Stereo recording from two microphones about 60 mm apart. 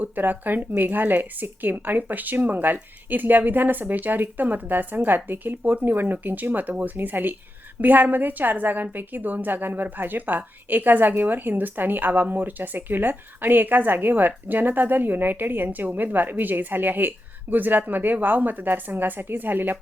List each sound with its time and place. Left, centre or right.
0.0 s a woman's voice: right